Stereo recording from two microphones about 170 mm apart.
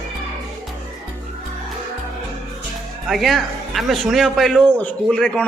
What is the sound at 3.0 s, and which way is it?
Speech, centre (ahead or behind).